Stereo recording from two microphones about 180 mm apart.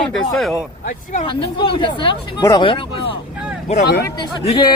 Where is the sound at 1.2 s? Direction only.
30° left (ahead or behind).